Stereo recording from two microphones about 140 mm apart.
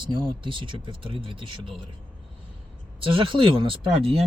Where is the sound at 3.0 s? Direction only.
40° right (ahead or behind).